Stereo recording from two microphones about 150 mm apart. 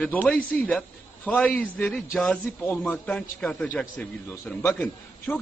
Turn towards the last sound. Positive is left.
turn(degrees=15)  # may be behind; listen again after turning